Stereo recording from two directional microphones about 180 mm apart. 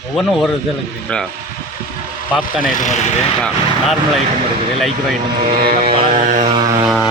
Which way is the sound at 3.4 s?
5° left (ahead or behind).